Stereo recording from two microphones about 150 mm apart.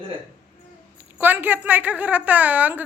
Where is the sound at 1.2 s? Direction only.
10° right (ahead or behind).